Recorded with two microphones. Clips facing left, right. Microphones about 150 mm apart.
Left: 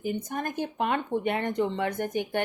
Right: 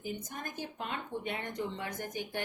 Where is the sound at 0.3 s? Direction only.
65° left (ahead or behind).